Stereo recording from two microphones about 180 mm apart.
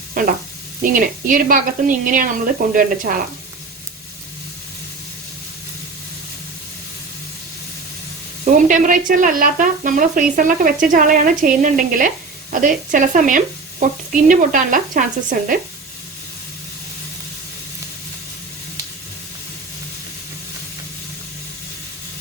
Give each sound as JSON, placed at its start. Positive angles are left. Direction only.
{"t": 0.9, "sound": "speech", "side_deg": -45}
{"t": 8.4, "sound": "speech", "side_deg": -45}